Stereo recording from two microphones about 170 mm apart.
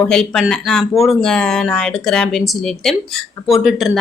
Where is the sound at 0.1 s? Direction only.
5° left (ahead or behind).